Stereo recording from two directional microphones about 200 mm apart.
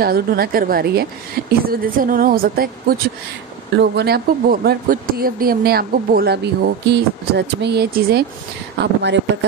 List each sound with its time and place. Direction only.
0.0 s speech: 50° right (ahead or behind)
3.7 s speech: 60° right (ahead or behind)